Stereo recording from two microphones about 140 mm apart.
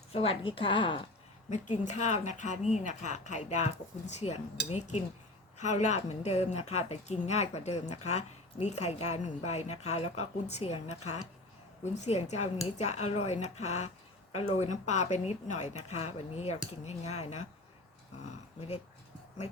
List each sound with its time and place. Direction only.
0.1 s a woman's voice: 40° left (ahead or behind)
1.5 s speech: 60° left (ahead or behind)
5.5 s a woman's voice: 55° left (ahead or behind)